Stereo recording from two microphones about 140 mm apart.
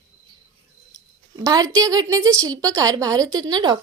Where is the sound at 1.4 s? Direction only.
25° right (ahead or behind).